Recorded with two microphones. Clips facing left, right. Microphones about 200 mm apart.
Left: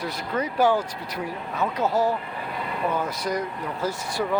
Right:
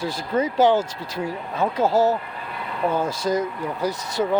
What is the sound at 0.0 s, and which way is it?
Speech, 25° right (ahead or behind).